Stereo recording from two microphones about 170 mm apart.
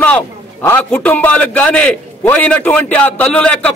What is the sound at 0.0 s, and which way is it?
A man's voice, 10° left (ahead or behind).